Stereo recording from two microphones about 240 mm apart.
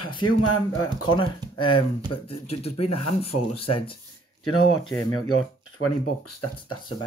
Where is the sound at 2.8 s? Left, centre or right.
Left.